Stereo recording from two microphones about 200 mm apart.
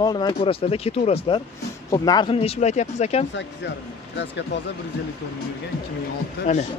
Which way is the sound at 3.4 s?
60° left (ahead or behind).